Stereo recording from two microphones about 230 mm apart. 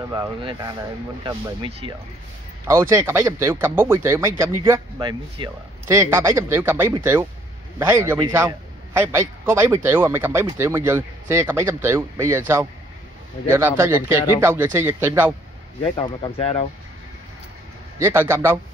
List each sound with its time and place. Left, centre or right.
0.1 s a man's voice: centre
15.8 s speech: left
17.9 s a man's voice: centre